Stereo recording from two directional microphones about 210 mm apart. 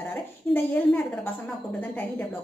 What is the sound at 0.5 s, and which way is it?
Speech, 10° left (ahead or behind).